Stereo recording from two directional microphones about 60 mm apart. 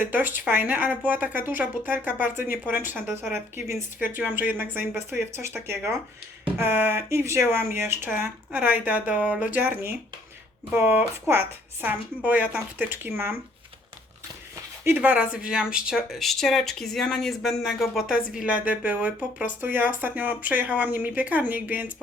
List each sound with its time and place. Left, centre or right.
0.0 s speech: right
4.3 s speech: right
4.9 s speech: right
6.6 s speech: right
7.1 s speech: right
15.0 s speech: right
15.3 s speech: centre
16.1 s speech: centre
18.4 s speech: right